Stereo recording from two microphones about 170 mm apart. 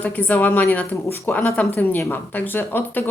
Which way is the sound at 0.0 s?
10° left (ahead or behind).